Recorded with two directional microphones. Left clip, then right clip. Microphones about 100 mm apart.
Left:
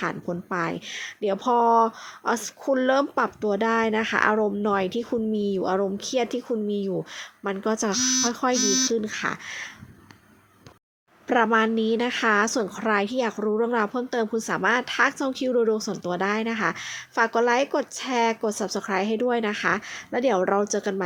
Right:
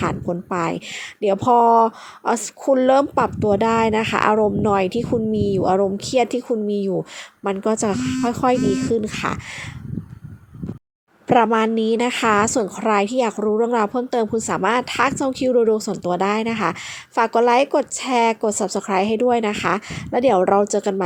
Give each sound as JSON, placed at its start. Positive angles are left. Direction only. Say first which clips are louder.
{"t": 0.0, "sound": "speech", "louder": "right 6 dB", "side_deg": -45}
{"t": 11.3, "sound": "speech", "louder": "right 5 dB", "side_deg": -45}